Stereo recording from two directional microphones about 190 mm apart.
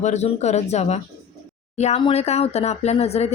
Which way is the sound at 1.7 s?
35° left (ahead or behind).